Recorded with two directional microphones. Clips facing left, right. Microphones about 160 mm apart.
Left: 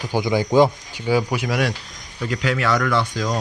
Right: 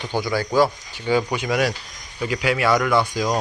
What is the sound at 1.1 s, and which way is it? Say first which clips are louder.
Speech: even; 5° left (ahead or behind).